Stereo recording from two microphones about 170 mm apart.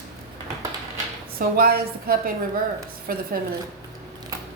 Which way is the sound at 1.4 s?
60° right (ahead or behind).